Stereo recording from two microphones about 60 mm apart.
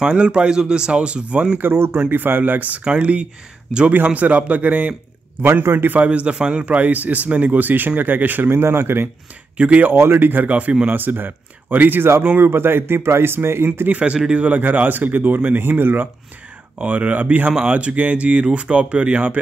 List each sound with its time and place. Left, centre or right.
0.0 s speech: centre
1.6 s speech: right
5.4 s speech: right
9.6 s speech: right
9.9 s speech: right
10.9 s speech: right
13.8 s speech: right
16.7 s speech: right